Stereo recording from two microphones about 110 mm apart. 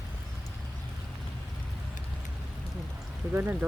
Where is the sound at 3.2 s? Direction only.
20° right (ahead or behind).